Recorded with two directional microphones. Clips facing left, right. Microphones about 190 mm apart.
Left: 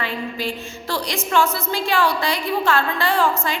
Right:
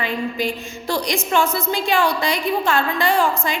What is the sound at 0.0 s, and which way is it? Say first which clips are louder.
A woman's voice: right 3 dB; 15° right (ahead or behind).